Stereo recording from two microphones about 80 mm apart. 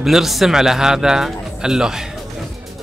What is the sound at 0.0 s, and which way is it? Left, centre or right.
Speech, centre.